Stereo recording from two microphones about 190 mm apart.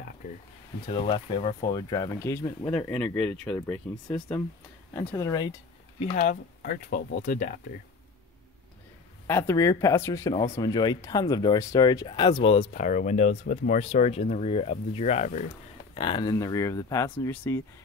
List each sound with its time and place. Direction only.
0.8 s speech: 25° left (ahead or behind)
5.9 s speech: 40° left (ahead or behind)
9.3 s speech: 15° left (ahead or behind)
10.3 s speech: 35° left (ahead or behind)
10.6 s speech: 20° left (ahead or behind); by 15.4 s 35° left (ahead or behind)
15.9 s speech: 25° left (ahead or behind)